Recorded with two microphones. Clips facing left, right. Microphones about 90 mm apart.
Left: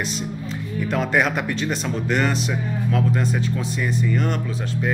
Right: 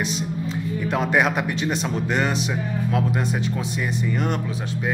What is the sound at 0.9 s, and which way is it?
Speech, 15° right (ahead or behind).